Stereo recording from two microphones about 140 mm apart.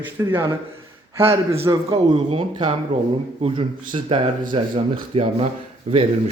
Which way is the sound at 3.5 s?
40° right (ahead or behind).